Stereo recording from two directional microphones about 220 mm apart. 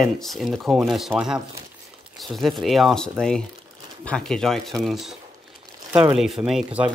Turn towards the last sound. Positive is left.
turn(degrees=-5)  # may be behind; listen again after turning